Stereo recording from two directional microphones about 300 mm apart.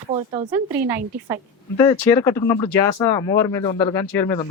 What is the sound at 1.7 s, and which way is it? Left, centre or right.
Speech, centre.